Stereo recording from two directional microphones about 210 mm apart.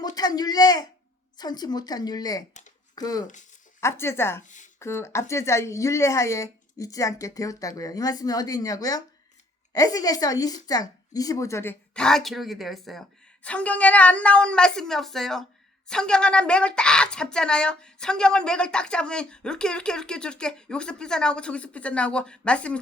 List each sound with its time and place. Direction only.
0.0 s speech: 20° left (ahead or behind)
2.5 s speech: 35° left (ahead or behind)
2.9 s speech: 20° left (ahead or behind)
4.4 s speech: 35° left (ahead or behind)
4.8 s speech: 10° left (ahead or behind)